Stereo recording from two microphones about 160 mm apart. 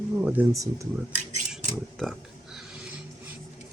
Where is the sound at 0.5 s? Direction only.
20° right (ahead or behind).